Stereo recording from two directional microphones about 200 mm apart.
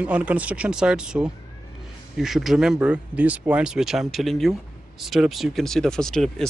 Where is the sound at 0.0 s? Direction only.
5° right (ahead or behind).